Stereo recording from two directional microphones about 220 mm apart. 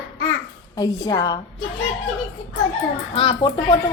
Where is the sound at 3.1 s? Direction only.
25° left (ahead or behind).